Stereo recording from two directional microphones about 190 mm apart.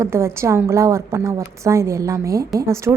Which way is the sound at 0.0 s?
15° right (ahead or behind).